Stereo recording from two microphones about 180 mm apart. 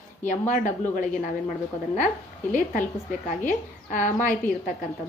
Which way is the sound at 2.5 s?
50° left (ahead or behind).